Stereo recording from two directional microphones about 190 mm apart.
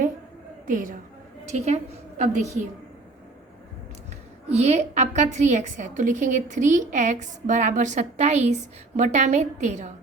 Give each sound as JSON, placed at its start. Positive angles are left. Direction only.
{"t": 0.7, "sound": "a woman's voice", "side_deg": -45}
{"t": 4.5, "sound": "a woman's voice", "side_deg": -35}